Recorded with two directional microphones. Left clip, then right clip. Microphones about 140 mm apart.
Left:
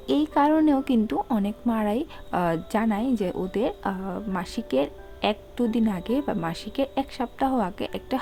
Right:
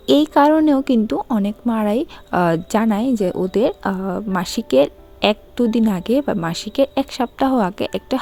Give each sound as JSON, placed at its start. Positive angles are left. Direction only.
{"t": 0.0, "sound": "a woman's voice", "side_deg": -60}